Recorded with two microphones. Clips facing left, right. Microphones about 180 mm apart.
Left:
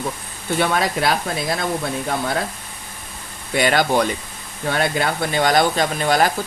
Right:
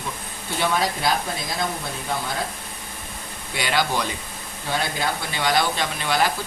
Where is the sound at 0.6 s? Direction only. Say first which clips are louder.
Left 3 dB; 60° left (ahead or behind).